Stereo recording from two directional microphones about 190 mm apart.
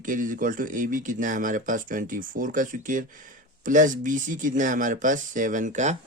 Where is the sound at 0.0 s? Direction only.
45° right (ahead or behind).